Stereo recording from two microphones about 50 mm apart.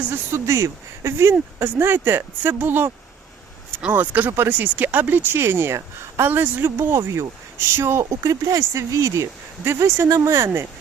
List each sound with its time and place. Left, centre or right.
0.3 s speech: right
1.5 s speech: right
3.9 s speech: right
6.9 s speech: right
8.1 s speech: right
9.6 s speech: right